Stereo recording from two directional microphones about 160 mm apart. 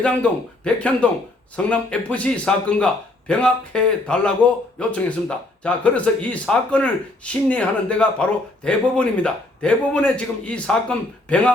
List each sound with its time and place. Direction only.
0.0 s speech: 5° left (ahead or behind)